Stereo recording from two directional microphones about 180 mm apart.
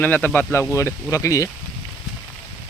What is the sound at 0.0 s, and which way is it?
Speech, 10° left (ahead or behind).